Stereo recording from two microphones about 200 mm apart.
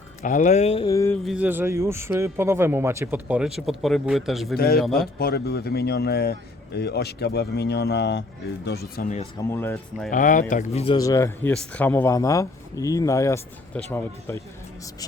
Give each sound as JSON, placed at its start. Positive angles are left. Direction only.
{"t": 0.2, "sound": "speech", "side_deg": 40}
{"t": 0.9, "sound": "speech", "side_deg": 15}
{"t": 1.2, "sound": "a man's voice", "side_deg": -5}
{"t": 4.5, "sound": "speech", "side_deg": 50}
{"t": 4.8, "sound": "a man's voice", "side_deg": 0}
{"t": 5.2, "sound": "speech", "side_deg": 50}
{"t": 9.5, "sound": "speech", "side_deg": 10}
{"t": 10.1, "sound": "speech", "side_deg": 40}
{"t": 10.9, "sound": "speech", "side_deg": 15}